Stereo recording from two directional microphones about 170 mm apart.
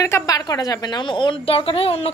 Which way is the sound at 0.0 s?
20° left (ahead or behind).